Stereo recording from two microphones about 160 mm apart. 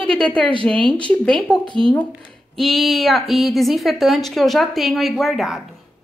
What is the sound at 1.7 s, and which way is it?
Speech, 35° right (ahead or behind).